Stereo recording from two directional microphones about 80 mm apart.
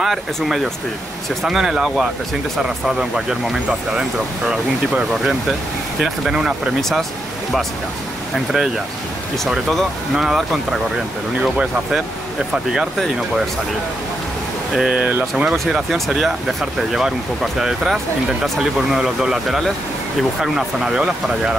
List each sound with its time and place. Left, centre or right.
0.0 s speech: centre
4.5 s speech: centre
6.8 s speech: centre
8.5 s speech: centre
14.7 s speech: centre
15.3 s speech: centre